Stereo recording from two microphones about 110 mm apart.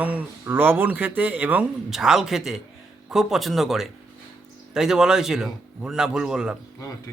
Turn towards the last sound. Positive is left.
turn(degrees=-5)  # may be behind; listen again after turning